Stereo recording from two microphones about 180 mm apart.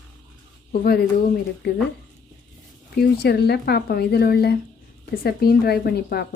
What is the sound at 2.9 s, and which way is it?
Speech, 65° left (ahead or behind).